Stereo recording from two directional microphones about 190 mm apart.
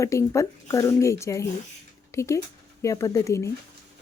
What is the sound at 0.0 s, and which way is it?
Speech, 15° left (ahead or behind).